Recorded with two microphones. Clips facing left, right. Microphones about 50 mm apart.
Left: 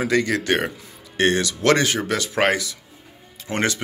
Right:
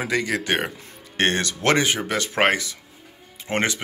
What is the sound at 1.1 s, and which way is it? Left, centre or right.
Speech, right.